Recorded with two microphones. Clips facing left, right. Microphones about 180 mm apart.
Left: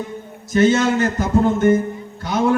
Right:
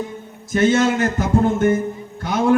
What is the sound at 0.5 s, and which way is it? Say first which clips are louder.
Speech: left 1 dB; 55° right (ahead or behind).